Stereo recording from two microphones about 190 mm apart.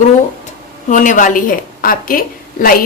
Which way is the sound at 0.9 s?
45° left (ahead or behind).